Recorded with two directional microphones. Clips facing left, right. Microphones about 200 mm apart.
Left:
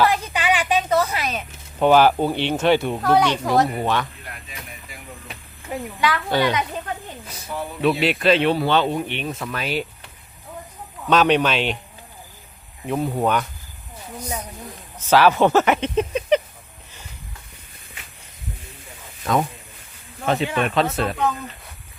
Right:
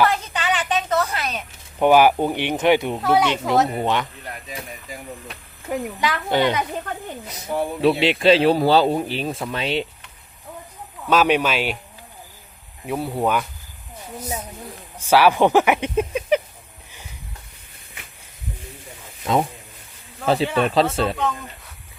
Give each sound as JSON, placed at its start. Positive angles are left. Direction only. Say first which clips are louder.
{"t": 0.0, "sound": "a sound", "louder": "left 1 dB", "side_deg": 10}
{"t": 1.8, "sound": "speech", "louder": "even", "side_deg": -10}
{"t": 3.3, "sound": "speech", "louder": "even", "side_deg": -20}
{"t": 4.4, "sound": "a sound", "louder": "right 6 dB", "side_deg": -40}
{"t": 6.0, "sound": "speech", "louder": "left 1 dB", "side_deg": -20}
{"t": 7.6, "sound": "speech", "louder": "right 2 dB", "side_deg": -30}
{"t": 11.1, "sound": "speech", "louder": "left 1 dB", "side_deg": -5}
{"t": 12.8, "sound": "speech", "louder": "left 1 dB", "side_deg": -5}
{"t": 14.9, "sound": "speech", "louder": "even", "side_deg": -10}
{"t": 19.2, "sound": "speech", "louder": "right 1 dB", "side_deg": -25}